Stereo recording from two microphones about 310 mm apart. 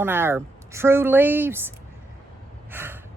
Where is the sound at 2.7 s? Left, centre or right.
Centre.